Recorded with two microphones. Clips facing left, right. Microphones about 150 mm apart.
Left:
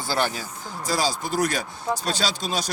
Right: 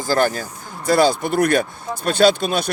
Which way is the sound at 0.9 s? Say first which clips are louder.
Right 9 dB; 60° right (ahead or behind).